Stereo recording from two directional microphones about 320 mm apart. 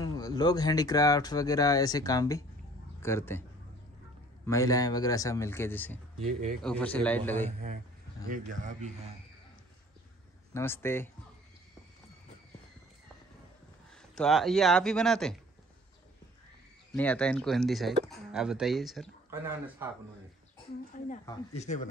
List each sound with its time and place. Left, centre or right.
0.0 s speech: centre
4.5 s speech: centre
6.1 s speech: centre
6.6 s speech: centre
8.3 s speech: right
10.5 s speech: centre
14.1 s speech: centre
16.9 s speech: centre
21.3 s speech: left